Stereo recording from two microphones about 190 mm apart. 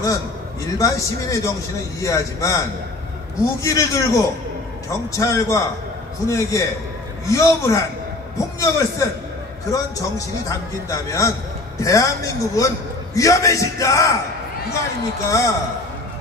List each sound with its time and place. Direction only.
0.7 s a man's voice: 15° left (ahead or behind)
3.6 s a man's voice: 15° left (ahead or behind)
15.2 s a man's voice: 15° left (ahead or behind)